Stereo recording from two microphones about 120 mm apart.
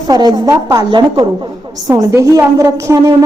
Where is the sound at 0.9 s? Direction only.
40° right (ahead or behind).